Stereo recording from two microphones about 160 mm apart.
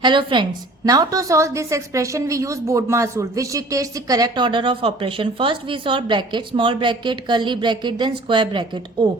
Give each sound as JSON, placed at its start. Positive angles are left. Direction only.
{"t": 0.0, "sound": "a woman's voice", "side_deg": -30}